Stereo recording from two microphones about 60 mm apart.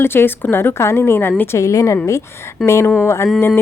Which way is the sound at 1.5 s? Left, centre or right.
Left.